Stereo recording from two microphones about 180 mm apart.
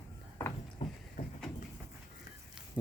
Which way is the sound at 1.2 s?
45° left (ahead or behind).